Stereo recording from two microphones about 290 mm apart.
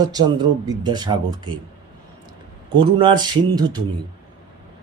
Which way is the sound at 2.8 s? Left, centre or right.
Centre.